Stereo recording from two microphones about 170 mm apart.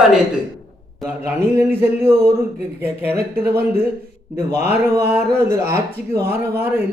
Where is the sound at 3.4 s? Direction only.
15° right (ahead or behind).